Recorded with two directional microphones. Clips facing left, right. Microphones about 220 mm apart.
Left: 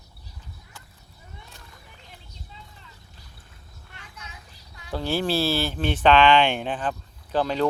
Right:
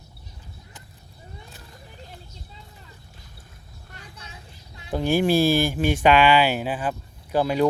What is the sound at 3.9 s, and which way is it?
Vehicle, 35° right (ahead or behind).